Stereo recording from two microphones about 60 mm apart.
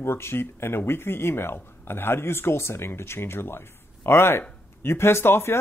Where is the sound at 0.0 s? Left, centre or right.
Left.